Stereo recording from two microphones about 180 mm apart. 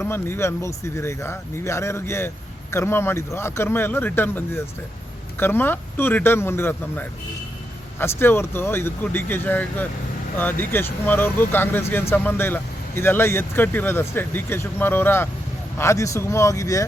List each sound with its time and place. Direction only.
0.0 s speech: 15° left (ahead or behind)